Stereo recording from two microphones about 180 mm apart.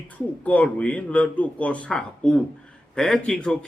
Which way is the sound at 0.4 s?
10° left (ahead or behind).